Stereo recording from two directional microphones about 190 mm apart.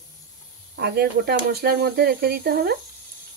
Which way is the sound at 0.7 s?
60° right (ahead or behind).